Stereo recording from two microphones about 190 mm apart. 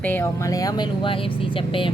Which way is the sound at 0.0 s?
10° left (ahead or behind).